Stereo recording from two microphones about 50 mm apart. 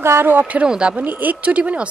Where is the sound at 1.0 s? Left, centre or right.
Right.